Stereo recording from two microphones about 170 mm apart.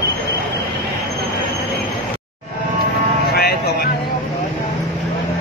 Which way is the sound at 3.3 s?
65° left (ahead or behind).